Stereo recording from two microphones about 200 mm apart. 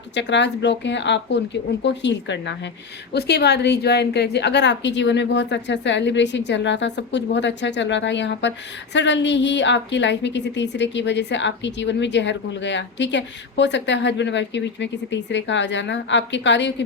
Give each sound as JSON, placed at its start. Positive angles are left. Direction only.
{"t": 0.1, "sound": "a woman's voice", "side_deg": 60}